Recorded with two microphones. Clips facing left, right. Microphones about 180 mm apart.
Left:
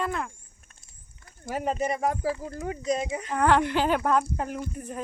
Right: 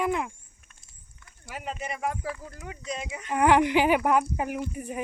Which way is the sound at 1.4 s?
40° left (ahead or behind).